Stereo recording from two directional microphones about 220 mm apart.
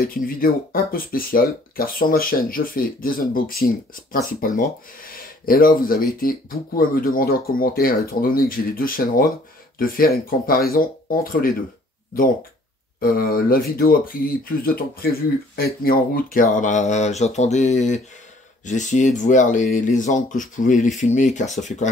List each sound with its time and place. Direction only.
0.0 s speech: 40° left (ahead or behind)
13.0 s speech: 40° left (ahead or behind)